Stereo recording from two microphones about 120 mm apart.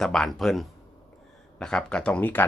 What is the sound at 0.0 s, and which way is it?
Speech, 5° left (ahead or behind).